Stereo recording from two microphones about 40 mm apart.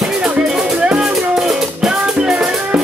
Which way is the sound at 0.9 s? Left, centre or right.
Centre.